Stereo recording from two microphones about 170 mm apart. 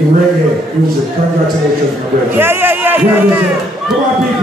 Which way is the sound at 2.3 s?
15° right (ahead or behind).